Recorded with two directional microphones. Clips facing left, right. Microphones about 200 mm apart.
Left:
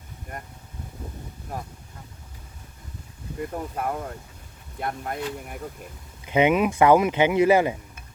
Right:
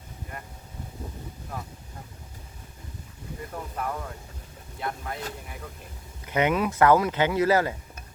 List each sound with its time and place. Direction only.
3.5 s speech: 45° left (ahead or behind)
6.2 s speech: 15° left (ahead or behind)